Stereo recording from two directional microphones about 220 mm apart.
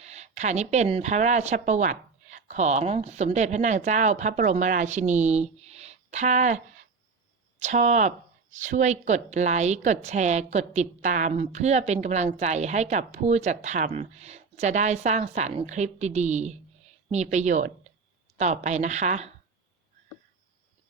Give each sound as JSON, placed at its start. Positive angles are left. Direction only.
{"t": 0.0, "sound": "speech", "side_deg": -30}
{"t": 7.6, "sound": "a woman's voice", "side_deg": -30}